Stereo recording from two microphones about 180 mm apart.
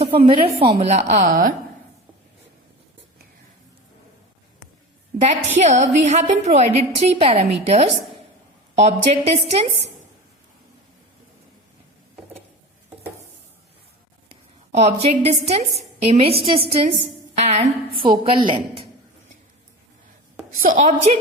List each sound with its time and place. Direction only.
0.0 s a woman's voice: 30° right (ahead or behind); by 1.5 s 50° right (ahead or behind)
5.5 s a woman's voice: 40° right (ahead or behind)
14.7 s a woman's voice: 40° right (ahead or behind)
18.0 s a woman's voice: 30° right (ahead or behind)
20.6 s a woman's voice: 45° right (ahead or behind)